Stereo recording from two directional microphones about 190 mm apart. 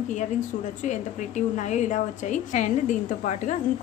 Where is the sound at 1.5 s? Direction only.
40° left (ahead or behind).